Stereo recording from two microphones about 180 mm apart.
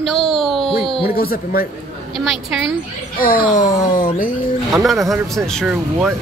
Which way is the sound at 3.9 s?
50° left (ahead or behind).